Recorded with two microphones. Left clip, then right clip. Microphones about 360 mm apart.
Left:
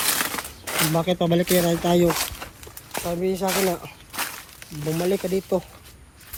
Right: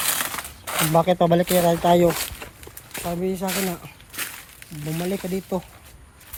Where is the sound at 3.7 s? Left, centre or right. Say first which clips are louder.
Left 5 dB; centre.